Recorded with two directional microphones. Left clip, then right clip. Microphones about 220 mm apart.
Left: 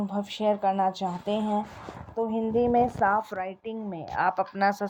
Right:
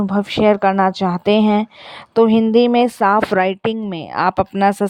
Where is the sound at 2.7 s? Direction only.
65° right (ahead or behind).